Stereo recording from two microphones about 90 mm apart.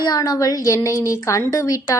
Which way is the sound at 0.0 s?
45° left (ahead or behind).